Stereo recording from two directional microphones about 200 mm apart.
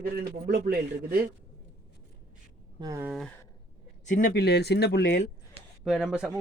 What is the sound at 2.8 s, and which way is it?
Speech, 15° right (ahead or behind).